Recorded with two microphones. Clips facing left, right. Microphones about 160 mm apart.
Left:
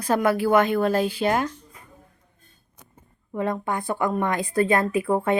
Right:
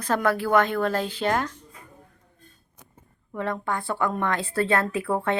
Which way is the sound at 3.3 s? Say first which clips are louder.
Left 2 dB; 20° left (ahead or behind).